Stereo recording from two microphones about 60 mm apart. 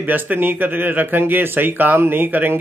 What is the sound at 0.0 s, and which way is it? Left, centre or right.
Speech, right.